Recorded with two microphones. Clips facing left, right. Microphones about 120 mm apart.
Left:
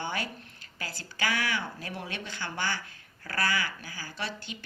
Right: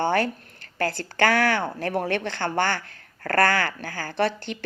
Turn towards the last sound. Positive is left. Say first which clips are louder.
# right 13 dB
turn(degrees=-60)  # may be behind; listen again after turning